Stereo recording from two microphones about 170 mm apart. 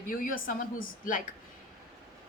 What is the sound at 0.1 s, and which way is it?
A woman's voice, 55° left (ahead or behind).